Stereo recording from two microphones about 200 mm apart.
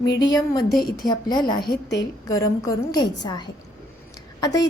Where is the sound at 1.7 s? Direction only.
60° left (ahead or behind).